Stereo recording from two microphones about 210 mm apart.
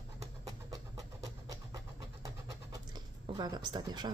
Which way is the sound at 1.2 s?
15° right (ahead or behind).